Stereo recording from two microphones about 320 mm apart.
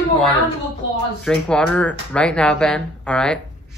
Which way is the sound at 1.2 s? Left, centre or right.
Centre.